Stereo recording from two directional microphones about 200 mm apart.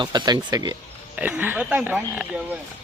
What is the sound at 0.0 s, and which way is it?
Speech, 20° right (ahead or behind).